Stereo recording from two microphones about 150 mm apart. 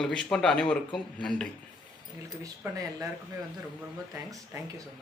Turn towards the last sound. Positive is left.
turn(degrees=-20)  # may be behind; listen again after turning